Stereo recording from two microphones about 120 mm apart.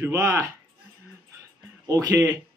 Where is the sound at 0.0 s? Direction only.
20° right (ahead or behind).